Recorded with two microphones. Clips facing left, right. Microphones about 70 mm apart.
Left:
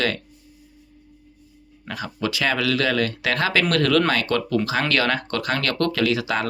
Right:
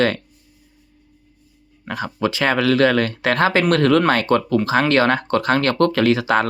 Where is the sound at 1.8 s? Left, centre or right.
Right.